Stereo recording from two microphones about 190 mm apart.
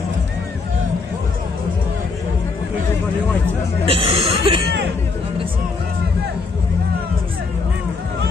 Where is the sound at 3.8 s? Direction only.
30° right (ahead or behind).